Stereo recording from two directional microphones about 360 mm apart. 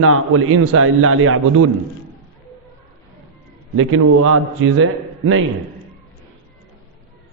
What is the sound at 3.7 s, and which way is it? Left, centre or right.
A man's voice, right.